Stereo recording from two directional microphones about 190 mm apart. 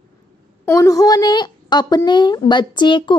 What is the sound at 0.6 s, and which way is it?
A woman's voice, 15° left (ahead or behind).